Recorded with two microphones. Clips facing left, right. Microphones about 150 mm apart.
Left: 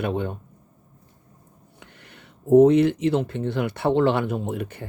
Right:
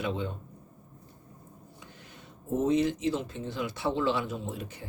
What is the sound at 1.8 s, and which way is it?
Speech, 65° left (ahead or behind).